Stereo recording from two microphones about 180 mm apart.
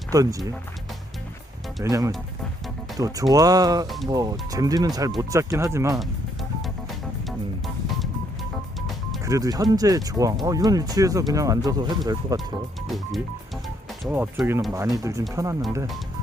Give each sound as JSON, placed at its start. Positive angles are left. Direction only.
{"t": 0.1, "sound": "speech", "side_deg": -20}
{"t": 1.8, "sound": "speech", "side_deg": -20}
{"t": 3.8, "sound": "music", "side_deg": 0}
{"t": 4.1, "sound": "speech", "side_deg": -20}
{"t": 7.3, "sound": "music", "side_deg": 0}
{"t": 9.2, "sound": "speech", "side_deg": -20}
{"t": 12.9, "sound": "music", "side_deg": 0}
{"t": 14.1, "sound": "speech", "side_deg": -10}